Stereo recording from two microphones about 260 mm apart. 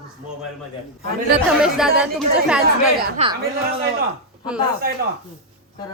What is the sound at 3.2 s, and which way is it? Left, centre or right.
Speech, right.